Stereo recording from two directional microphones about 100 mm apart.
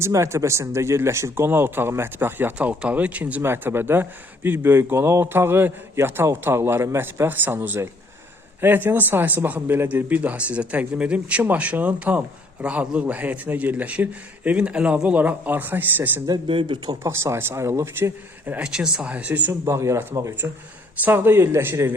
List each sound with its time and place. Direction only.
0.0 s speech: 30° right (ahead or behind)
16.5 s speech: 55° right (ahead or behind)
16.9 s speech: 30° right (ahead or behind)
20.4 s speech: 15° right (ahead or behind)